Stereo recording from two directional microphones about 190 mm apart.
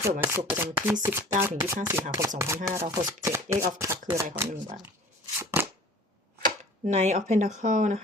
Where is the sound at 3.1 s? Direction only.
15° right (ahead or behind).